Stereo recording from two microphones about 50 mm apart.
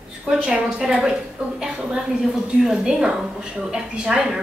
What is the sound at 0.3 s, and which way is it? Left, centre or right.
Speech, centre.